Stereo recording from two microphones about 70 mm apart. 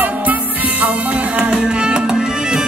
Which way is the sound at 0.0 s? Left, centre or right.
Right.